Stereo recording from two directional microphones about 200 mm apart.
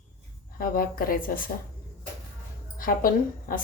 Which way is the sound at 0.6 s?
45° left (ahead or behind).